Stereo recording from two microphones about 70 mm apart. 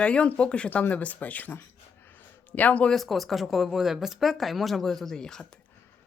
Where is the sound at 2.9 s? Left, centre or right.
Centre.